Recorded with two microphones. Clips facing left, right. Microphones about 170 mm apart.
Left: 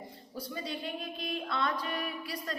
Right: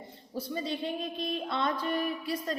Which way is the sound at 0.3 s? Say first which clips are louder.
Right 5 dB; 25° right (ahead or behind).